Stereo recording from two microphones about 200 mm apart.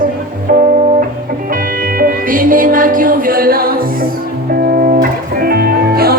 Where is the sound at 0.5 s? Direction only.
45° right (ahead or behind).